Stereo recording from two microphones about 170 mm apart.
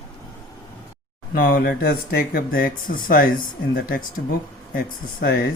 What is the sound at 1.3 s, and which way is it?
Speech, 55° left (ahead or behind).